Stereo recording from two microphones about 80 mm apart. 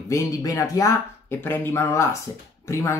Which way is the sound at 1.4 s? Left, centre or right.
Left.